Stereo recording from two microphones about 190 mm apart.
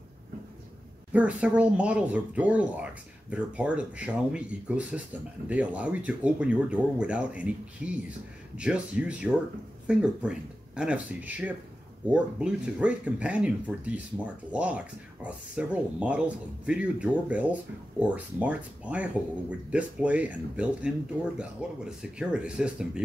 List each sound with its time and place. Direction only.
1.1 s speech: 5° right (ahead or behind)